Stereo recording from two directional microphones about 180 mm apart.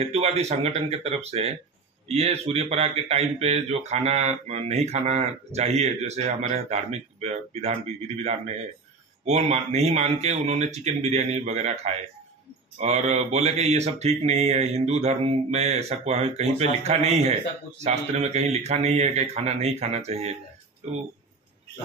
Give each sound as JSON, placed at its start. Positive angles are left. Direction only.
{"t": 0.0, "sound": "speech", "side_deg": -35}